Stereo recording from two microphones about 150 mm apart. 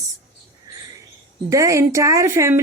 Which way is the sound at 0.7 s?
25° right (ahead or behind).